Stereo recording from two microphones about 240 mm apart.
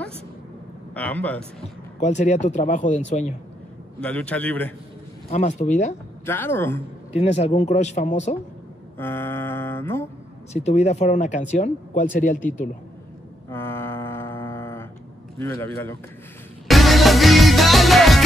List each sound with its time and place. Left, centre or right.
0.9 s mantra: centre
2.0 s speech: left
4.0 s a man's voice: centre
5.3 s speech: left
6.2 s mantra: centre
7.2 s speech: left
8.9 s mantra: centre
10.5 s speech: left
13.5 s a sound: centre
15.3 s mantra: centre
16.6 s music: centre